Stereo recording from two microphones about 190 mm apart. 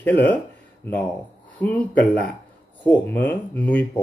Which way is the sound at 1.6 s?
10° left (ahead or behind).